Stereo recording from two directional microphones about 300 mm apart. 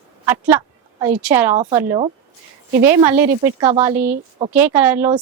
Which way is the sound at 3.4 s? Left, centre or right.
Centre.